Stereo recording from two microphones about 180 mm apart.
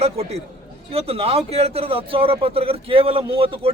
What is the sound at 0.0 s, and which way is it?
A man's voice, 35° right (ahead or behind).